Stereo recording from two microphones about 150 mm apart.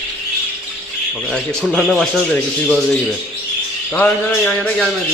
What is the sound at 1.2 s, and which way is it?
Speech, 5° left (ahead or behind).